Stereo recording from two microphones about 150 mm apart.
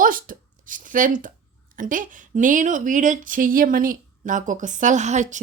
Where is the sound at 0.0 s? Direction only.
65° right (ahead or behind).